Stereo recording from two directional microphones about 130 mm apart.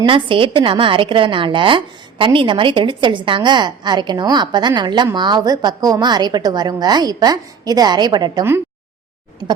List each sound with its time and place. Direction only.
0.0 s a woman's voice: 40° right (ahead or behind)